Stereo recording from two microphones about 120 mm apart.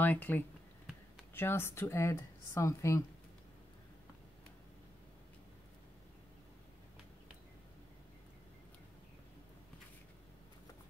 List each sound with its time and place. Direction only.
0.0 s a woman's voice: 15° left (ahead or behind)